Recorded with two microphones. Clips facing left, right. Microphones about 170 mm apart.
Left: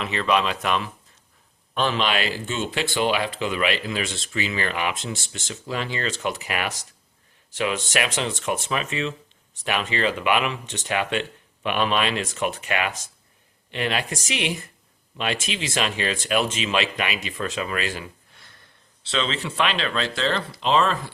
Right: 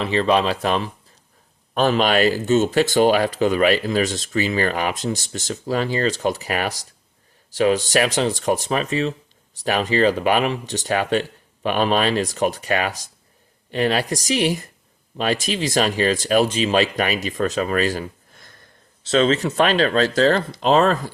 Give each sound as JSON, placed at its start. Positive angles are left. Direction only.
{"t": 0.0, "sound": "speech", "side_deg": -30}
{"t": 1.7, "sound": "speech", "side_deg": -45}